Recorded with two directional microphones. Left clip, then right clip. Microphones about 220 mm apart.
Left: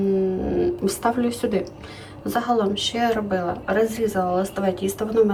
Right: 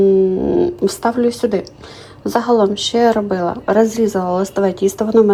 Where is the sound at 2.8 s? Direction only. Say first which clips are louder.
Right 9 dB; centre (ahead or behind).